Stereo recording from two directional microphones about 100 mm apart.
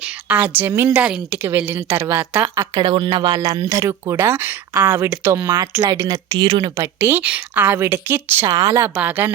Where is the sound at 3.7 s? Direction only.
30° right (ahead or behind).